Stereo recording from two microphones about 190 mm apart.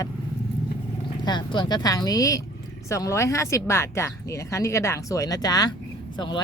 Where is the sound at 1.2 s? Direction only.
25° left (ahead or behind).